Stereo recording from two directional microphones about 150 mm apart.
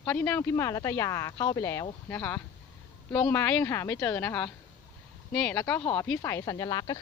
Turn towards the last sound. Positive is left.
turn(degrees=25)  # may be behind; listen again after turning